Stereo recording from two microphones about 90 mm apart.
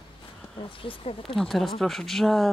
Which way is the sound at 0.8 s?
90° left.